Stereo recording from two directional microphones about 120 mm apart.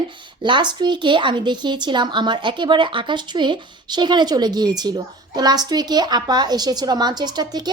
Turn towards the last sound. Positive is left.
turn(degrees=-35)  # may be behind; listen again after turning